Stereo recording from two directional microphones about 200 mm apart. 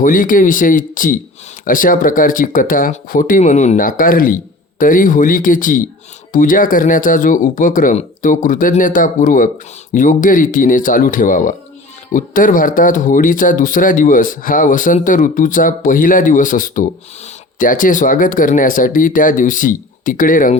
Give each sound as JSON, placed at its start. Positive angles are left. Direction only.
{"t": 0.0, "sound": "speech", "side_deg": 40}